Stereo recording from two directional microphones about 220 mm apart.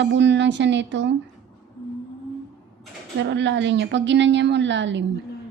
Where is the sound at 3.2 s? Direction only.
55° right (ahead or behind).